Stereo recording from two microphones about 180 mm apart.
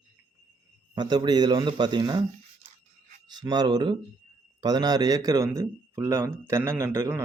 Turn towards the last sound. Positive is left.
turn(degrees=-15)  # may be behind; listen again after turning